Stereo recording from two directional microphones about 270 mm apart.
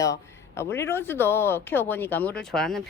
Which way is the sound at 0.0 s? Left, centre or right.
Centre.